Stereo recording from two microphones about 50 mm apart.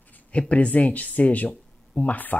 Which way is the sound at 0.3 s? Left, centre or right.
Left.